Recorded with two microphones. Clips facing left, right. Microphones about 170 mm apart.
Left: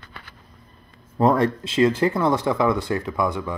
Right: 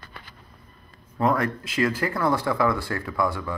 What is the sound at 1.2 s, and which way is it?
Speech, 30° left (ahead or behind).